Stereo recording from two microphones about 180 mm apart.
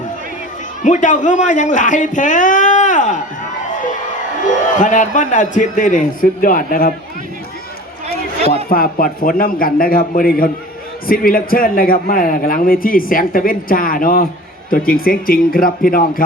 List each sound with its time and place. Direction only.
0.8 s a man's voice: 45° left (ahead or behind)
8.7 s a man's voice: 50° left (ahead or behind)